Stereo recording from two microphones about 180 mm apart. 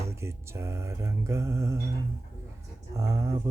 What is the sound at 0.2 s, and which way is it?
Speech, 15° right (ahead or behind).